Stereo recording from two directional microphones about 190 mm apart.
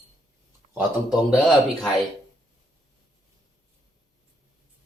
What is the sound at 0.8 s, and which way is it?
Speech, 5° right (ahead or behind).